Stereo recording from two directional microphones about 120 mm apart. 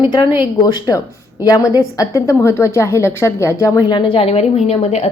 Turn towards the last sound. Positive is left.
turn(degrees=60)  # may be behind; listen again after turning